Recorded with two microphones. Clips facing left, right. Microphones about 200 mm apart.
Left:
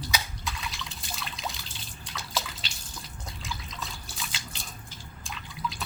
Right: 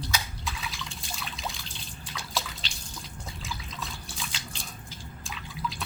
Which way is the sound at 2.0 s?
Centre (ahead or behind).